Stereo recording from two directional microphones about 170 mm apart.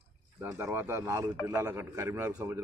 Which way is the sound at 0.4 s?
15° right (ahead or behind).